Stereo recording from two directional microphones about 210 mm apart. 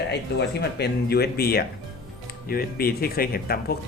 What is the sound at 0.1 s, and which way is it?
Speech, 55° left (ahead or behind).